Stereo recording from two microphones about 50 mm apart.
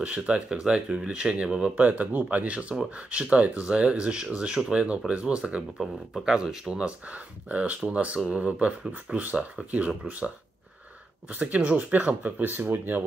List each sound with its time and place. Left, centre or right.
0.0 s speech: right
1.9 s speech: right
5.2 s speech: centre
7.1 s speech: right